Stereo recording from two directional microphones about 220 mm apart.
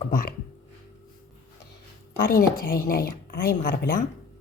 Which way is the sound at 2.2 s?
40° left (ahead or behind).